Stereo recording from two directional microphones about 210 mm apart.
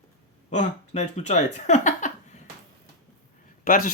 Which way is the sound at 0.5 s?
30° left (ahead or behind).